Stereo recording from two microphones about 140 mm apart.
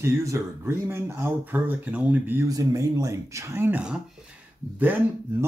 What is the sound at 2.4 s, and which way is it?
Speech, 25° right (ahead or behind).